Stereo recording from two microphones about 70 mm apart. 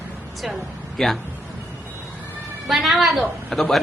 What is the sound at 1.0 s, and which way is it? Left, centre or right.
Speech, centre.